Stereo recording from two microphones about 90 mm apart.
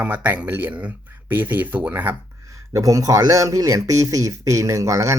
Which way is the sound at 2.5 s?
35° right (ahead or behind).